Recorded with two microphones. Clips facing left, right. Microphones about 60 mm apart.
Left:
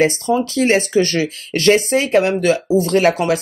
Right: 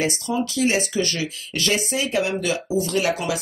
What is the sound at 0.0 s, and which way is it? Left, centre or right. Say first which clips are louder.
Speech: left 8 dB; left.